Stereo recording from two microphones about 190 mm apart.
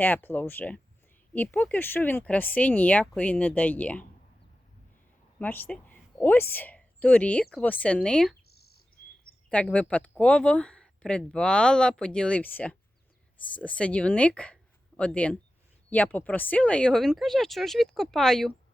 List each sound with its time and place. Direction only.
0.0 s speech: 10° left (ahead or behind)
5.4 s a woman's voice: 10° left (ahead or behind)
8.4 s bird vocalization: 55° left (ahead or behind)
9.5 s speech: 5° left (ahead or behind)